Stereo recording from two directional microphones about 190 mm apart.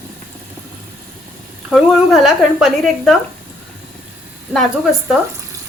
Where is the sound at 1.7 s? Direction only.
Centre (ahead or behind).